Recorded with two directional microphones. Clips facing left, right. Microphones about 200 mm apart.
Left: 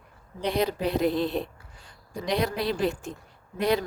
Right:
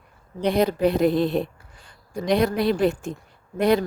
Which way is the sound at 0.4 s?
50° right (ahead or behind).